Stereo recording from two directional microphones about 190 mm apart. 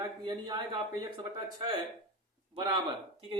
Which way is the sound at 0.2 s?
20° right (ahead or behind).